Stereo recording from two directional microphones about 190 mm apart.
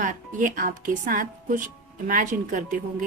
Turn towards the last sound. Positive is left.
turn(degrees=-40)  # may be behind; listen again after turning